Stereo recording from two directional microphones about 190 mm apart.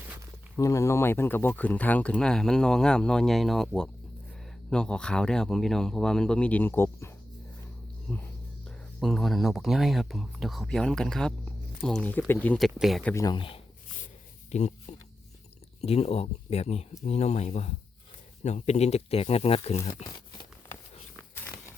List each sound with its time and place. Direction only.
0.5 s speech: 15° left (ahead or behind)
8.1 s speech: 5° left (ahead or behind)
13.2 s speech: 25° left (ahead or behind)
14.5 s speech: 35° left (ahead or behind)
21.3 s a sound: 10° left (ahead or behind)